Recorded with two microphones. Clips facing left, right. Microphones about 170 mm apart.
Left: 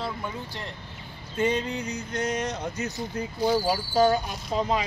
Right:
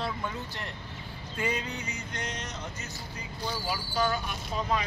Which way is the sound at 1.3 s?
30° left (ahead or behind).